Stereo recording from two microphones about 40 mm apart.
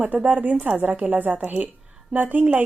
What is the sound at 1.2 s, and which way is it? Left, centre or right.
A woman's voice, right.